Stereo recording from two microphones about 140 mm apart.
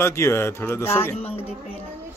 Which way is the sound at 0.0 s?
20° left (ahead or behind).